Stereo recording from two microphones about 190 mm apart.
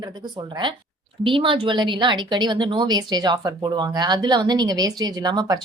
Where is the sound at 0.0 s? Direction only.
25° right (ahead or behind).